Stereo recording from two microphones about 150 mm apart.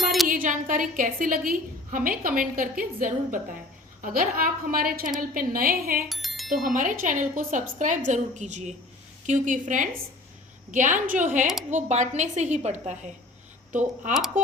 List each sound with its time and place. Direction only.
0.0 s a sound: centre (ahead or behind)
0.3 s a woman's voice: 60° right (ahead or behind)
4.0 s a woman's voice: 75° right (ahead or behind)
6.1 s music: centre (ahead or behind)
6.5 s a woman's voice: 65° right (ahead or behind)